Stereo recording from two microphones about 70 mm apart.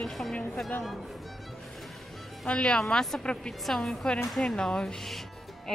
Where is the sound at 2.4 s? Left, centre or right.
Centre.